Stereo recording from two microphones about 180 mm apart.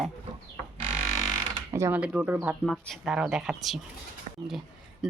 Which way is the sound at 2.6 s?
Centre (ahead or behind).